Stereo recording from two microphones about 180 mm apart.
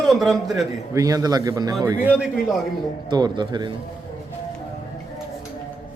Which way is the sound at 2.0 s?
5° right (ahead or behind).